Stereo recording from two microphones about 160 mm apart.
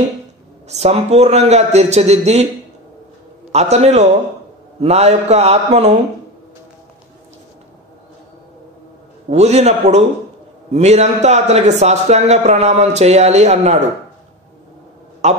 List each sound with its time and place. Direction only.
0.7 s a man's voice: 40° right (ahead or behind)
3.5 s a man's voice: 45° right (ahead or behind)
9.3 s a man's voice: 45° right (ahead or behind)
15.2 s a man's voice: 45° right (ahead or behind)